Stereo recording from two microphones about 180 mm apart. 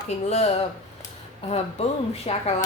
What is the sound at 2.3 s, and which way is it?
Speech, 35° left (ahead or behind).